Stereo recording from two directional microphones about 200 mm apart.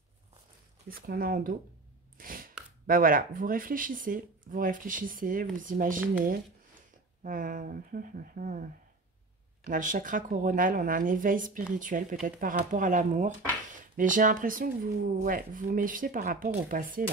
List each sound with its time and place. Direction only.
0.8 s speech: 45° right (ahead or behind)
2.1 s a sound: 45° right (ahead or behind)
2.9 s speech: 45° right (ahead or behind)
7.2 s speech: 40° right (ahead or behind)
9.7 s speech: 40° right (ahead or behind)